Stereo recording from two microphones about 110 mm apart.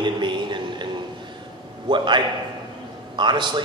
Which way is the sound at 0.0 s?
45° right (ahead or behind).